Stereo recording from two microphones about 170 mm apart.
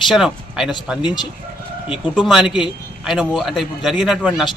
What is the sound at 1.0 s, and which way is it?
Speech, 25° left (ahead or behind).